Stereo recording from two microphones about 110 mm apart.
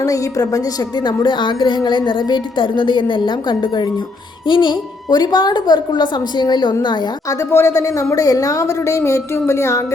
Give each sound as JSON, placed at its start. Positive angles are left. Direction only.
{"t": 0.0, "sound": "a woman's voice", "side_deg": 30}
{"t": 7.3, "sound": "a woman's voice", "side_deg": 25}